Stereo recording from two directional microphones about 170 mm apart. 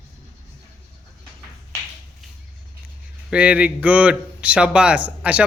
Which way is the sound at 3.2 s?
5° right (ahead or behind).